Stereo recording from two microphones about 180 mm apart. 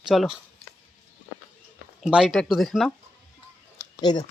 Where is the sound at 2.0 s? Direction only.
5° right (ahead or behind).